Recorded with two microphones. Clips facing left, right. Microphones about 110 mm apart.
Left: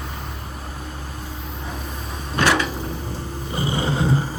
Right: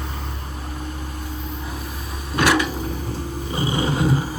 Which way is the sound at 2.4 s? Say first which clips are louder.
Right 1 dB; 15° right (ahead or behind).